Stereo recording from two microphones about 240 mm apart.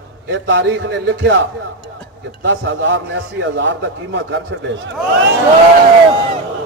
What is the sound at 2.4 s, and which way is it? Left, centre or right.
A man's voice, right.